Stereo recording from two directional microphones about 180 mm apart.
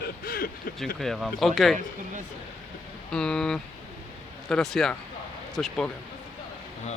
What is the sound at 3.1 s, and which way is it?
Speech, 5° left (ahead or behind).